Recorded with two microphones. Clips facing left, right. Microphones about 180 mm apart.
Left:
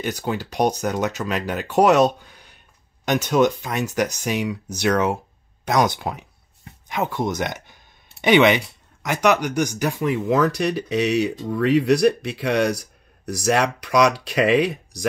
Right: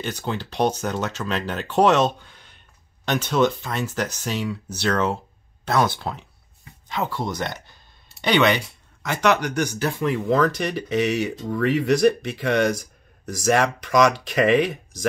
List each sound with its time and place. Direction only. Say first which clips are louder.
0.0 s speech: left 3 dB; 10° left (ahead or behind)